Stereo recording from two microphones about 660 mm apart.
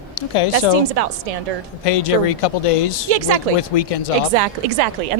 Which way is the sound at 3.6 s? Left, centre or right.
Left.